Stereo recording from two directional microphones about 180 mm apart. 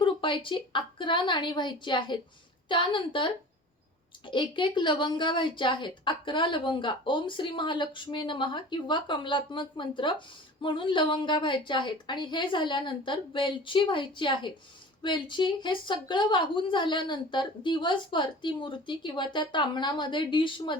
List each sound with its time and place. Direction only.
0.0 s a woman's voice: 30° left (ahead or behind)